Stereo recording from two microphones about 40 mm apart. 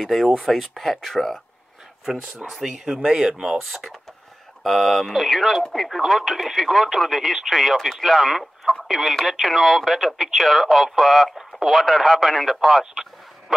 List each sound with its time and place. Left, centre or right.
0.0 s speech: centre
2.5 s speech: centre
3.0 s speech: right
3.3 s speech: centre
3.6 s speech: centre
13.5 s bow-wow: centre